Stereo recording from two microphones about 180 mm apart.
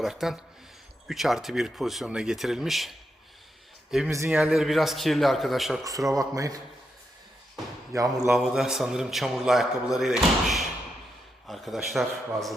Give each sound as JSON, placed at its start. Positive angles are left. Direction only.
{"t": 0.0, "sound": "a man's voice", "side_deg": 0}
{"t": 4.1, "sound": "a man's voice", "side_deg": -15}
{"t": 4.4, "sound": "a man's voice", "side_deg": 0}
{"t": 6.1, "sound": "speech", "side_deg": -20}
{"t": 7.9, "sound": "speech", "side_deg": -20}
{"t": 8.3, "sound": "a man's voice", "side_deg": -5}